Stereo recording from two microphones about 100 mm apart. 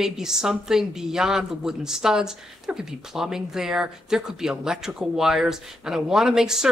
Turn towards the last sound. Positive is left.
turn(degrees=-5)  # may be behind; listen again after turning